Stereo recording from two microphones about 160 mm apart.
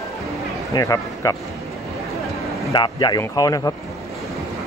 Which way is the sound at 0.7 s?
20° left (ahead or behind).